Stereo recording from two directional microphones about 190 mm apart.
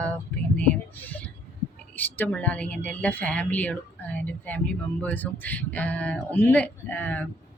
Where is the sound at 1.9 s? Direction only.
10° left (ahead or behind).